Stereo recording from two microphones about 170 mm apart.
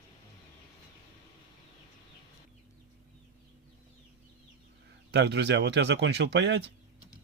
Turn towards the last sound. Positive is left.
turn(degrees=-90)